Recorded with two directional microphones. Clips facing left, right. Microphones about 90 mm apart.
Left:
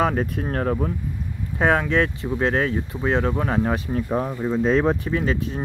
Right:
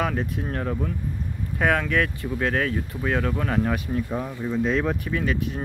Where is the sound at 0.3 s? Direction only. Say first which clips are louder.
Left 4 dB; 50° left (ahead or behind).